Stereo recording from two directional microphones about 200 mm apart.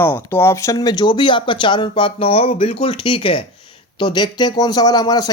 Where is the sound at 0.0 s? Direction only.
10° left (ahead or behind).